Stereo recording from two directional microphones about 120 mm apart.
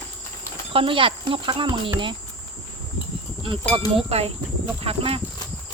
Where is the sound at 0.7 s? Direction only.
45° right (ahead or behind).